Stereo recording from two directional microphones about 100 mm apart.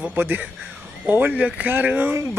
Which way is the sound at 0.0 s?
20° right (ahead or behind).